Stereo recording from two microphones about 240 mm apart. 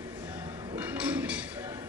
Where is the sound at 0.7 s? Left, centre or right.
Centre.